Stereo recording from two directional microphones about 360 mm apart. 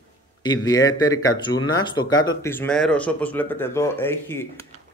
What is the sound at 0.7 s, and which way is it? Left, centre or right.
Speech, centre.